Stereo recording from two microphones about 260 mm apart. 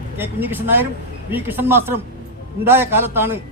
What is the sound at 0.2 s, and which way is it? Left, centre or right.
A man's voice, centre.